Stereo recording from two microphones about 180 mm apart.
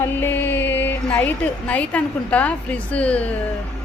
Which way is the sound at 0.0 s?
10° left (ahead or behind).